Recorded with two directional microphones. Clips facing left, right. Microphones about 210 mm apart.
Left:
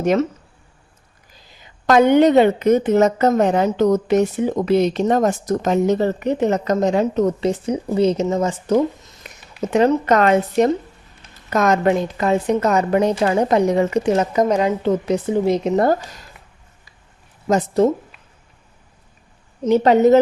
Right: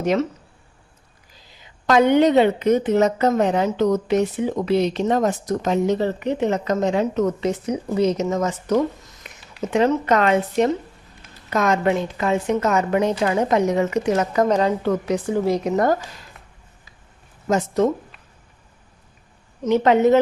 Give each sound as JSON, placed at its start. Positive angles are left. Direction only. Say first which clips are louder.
{"t": 0.0, "sound": "a woman's voice", "louder": "left 3 dB", "side_deg": 50}
{"t": 1.9, "sound": "a woman's voice", "louder": "left 3 dB", "side_deg": 45}
{"t": 9.2, "sound": "a sound", "louder": "left 2 dB", "side_deg": 40}
{"t": 9.7, "sound": "a woman's voice", "louder": "left 3 dB", "side_deg": 40}
{"t": 14.4, "sound": "a woman's voice", "louder": "right 1 dB", "side_deg": 10}
{"t": 14.8, "sound": "speech", "louder": "left 3 dB", "side_deg": 25}
{"t": 17.5, "sound": "a woman's voice", "louder": "left 3 dB", "side_deg": 30}
{"t": 19.6, "sound": "a woman's voice", "louder": "left 3 dB", "side_deg": 30}